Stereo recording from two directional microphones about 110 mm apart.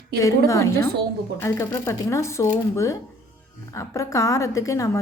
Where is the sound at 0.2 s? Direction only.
30° left (ahead or behind).